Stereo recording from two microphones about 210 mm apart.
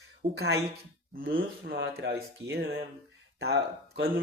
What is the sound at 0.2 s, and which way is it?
Speech, 50° right (ahead or behind).